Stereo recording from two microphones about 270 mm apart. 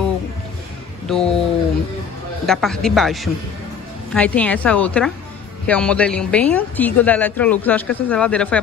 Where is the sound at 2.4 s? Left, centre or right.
Centre.